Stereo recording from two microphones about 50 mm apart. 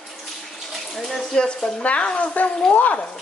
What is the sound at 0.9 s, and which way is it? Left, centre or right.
Bathtub, centre.